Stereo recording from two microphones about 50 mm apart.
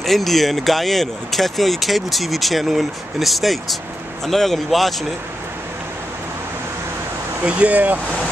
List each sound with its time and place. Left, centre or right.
0.0 s speech: centre
7.4 s speech: right